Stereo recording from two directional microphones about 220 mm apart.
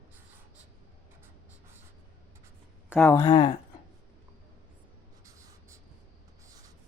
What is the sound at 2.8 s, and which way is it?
Speech, 10° left (ahead or behind).